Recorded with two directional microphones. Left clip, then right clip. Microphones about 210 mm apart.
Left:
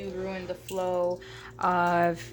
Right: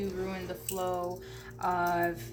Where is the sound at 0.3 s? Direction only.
50° left (ahead or behind).